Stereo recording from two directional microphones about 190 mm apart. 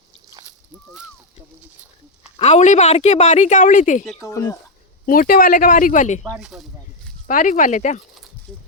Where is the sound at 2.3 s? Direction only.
35° left (ahead or behind).